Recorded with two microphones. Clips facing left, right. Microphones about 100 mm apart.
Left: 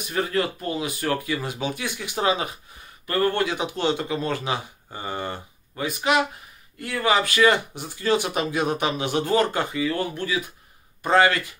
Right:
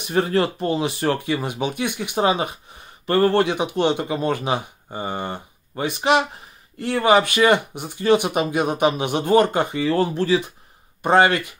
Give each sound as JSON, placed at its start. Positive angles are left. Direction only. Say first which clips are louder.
{"t": 0.1, "sound": "speech", "louder": "right 5 dB", "side_deg": -30}